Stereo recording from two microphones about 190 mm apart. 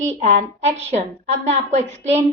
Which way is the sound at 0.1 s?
40° right (ahead or behind).